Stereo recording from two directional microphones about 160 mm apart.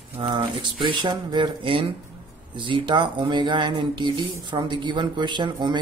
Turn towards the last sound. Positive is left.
turn(degrees=-30)  # may be behind; listen again after turning